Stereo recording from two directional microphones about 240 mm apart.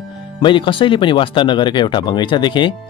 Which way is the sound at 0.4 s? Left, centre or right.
Centre.